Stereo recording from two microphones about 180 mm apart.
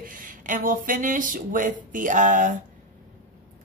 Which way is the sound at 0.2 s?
50° right (ahead or behind).